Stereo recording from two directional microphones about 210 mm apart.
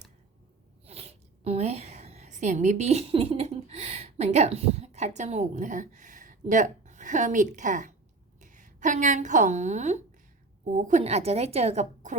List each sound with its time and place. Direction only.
0.9 s a woman's voice: 30° right (ahead or behind)